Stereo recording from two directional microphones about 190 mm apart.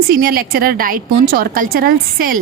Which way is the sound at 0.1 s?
50° right (ahead or behind).